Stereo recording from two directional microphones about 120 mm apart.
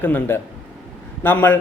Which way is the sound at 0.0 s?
15° left (ahead or behind).